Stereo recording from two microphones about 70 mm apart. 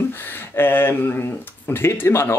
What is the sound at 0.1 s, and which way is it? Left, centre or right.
Speech, left.